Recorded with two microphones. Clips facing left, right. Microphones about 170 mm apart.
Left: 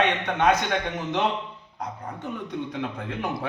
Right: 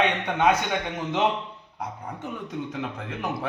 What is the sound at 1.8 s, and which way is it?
A man's voice, 5° right (ahead or behind).